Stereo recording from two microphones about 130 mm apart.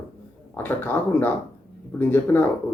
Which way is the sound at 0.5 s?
15° left (ahead or behind).